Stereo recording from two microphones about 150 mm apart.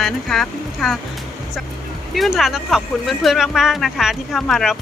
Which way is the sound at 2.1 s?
Centre (ahead or behind).